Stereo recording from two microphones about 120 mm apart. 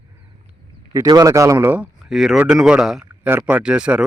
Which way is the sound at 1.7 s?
10° right (ahead or behind).